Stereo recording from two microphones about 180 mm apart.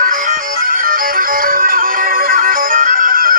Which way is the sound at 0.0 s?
45° right (ahead or behind).